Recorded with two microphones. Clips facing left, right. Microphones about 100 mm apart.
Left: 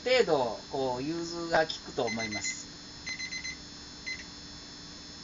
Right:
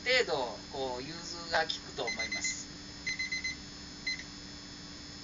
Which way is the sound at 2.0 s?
55° left (ahead or behind).